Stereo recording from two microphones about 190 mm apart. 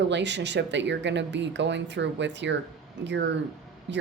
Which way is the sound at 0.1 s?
65° right (ahead or behind).